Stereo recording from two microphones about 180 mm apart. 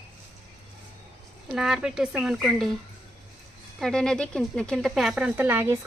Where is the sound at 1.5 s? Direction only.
5° right (ahead or behind).